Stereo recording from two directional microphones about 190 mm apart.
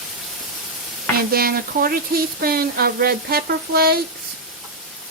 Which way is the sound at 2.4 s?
55° right (ahead or behind).